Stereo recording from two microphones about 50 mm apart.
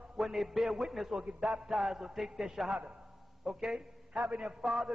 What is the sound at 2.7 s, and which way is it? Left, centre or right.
Speech, right.